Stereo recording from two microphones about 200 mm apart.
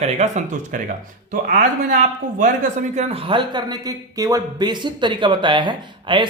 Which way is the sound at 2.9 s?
30° right (ahead or behind).